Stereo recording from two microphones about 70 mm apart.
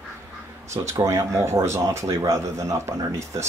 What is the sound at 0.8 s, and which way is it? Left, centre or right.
Speech, right.